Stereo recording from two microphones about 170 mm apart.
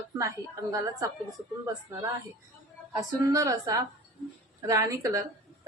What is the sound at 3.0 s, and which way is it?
A woman's voice, 20° right (ahead or behind).